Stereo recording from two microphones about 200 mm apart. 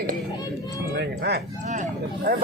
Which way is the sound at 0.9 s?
50° right (ahead or behind).